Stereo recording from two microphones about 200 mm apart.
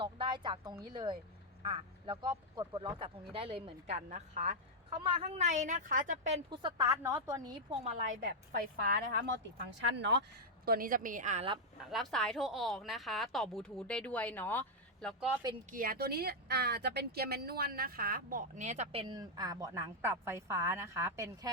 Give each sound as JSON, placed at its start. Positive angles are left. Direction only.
{"t": 0.0, "sound": "a woman's voice", "side_deg": -25}
{"t": 6.5, "sound": "speech", "side_deg": -20}
{"t": 7.9, "sound": "speech", "side_deg": -40}
{"t": 9.6, "sound": "speech", "side_deg": -60}
{"t": 10.7, "sound": "speech", "side_deg": -45}
{"t": 11.9, "sound": "a woman's voice", "side_deg": 0}
{"t": 15.7, "sound": "speech", "side_deg": -45}